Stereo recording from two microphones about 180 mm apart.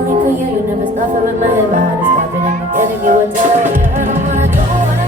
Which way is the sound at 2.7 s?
45° right (ahead or behind).